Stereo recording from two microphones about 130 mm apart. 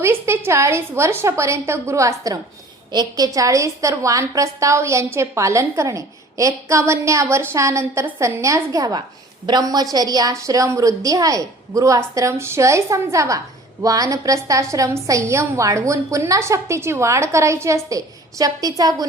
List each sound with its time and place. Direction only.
0.0 s a woman's voice: 20° right (ahead or behind)